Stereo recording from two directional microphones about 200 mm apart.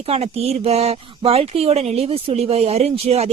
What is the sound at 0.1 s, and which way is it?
Speech, 30° right (ahead or behind).